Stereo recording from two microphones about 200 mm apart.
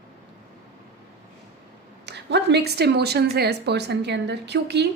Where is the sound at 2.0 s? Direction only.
60° right (ahead or behind).